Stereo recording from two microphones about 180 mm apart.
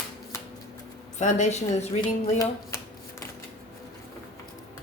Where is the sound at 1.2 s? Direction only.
40° left (ahead or behind).